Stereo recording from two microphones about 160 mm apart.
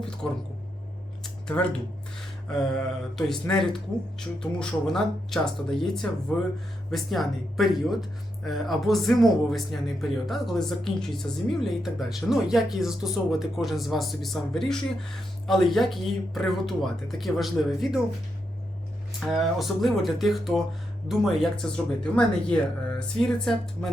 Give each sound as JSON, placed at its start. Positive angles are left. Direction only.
{"t": 1.2, "sound": "a sound", "side_deg": 5}
{"t": 3.5, "sound": "speech", "side_deg": 5}
{"t": 19.2, "sound": "speech", "side_deg": 0}